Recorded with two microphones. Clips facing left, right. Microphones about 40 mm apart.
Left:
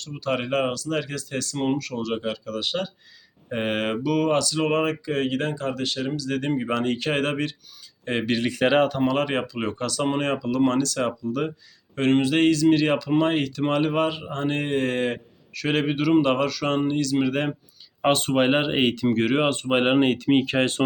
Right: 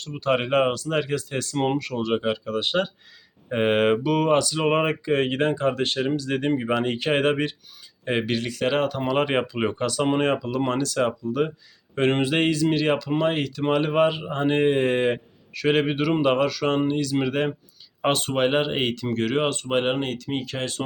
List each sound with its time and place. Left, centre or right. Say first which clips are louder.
0.0 s speech: right 3 dB; centre
6.4 s speech: right 1 dB; centre
8.4 s speech: left 4 dB; left
8.6 s speech: left 4 dB; centre
9.1 s speech: right 2 dB; centre
12.7 s speech: left 2 dB; centre; by 20.8 s left